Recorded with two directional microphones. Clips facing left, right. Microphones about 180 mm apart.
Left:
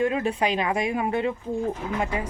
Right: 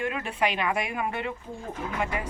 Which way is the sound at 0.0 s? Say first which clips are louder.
Left 5 dB; 35° left (ahead or behind).